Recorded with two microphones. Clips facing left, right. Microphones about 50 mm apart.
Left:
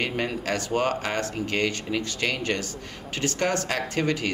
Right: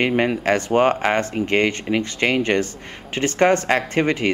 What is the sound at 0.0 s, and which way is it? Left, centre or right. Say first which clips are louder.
Speech: right 9 dB; right.